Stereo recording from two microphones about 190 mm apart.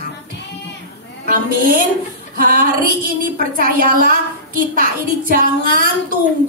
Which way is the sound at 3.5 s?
50° right (ahead or behind).